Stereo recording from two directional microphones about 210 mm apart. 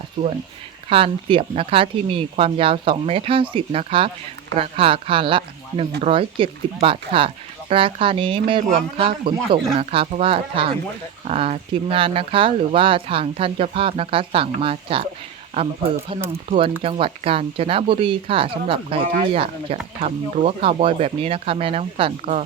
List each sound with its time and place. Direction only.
0.9 s speech: 25° right (ahead or behind)
16.5 s speech: 25° right (ahead or behind)